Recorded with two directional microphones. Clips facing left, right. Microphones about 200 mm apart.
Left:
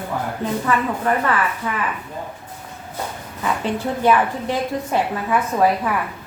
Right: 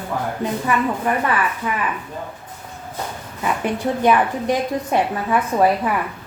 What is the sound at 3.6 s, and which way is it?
A woman's voice, 15° right (ahead or behind).